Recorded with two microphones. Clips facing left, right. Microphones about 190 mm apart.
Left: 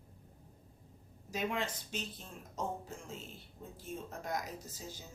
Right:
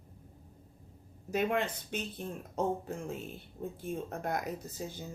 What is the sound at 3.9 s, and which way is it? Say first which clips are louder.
Speech: right 4 dB; 55° right (ahead or behind).